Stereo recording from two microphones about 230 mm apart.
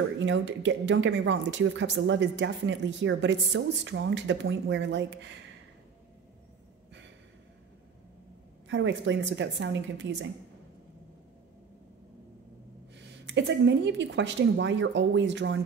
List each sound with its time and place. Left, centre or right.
0.2 s speech: right
8.6 s speech: right
13.3 s speech: right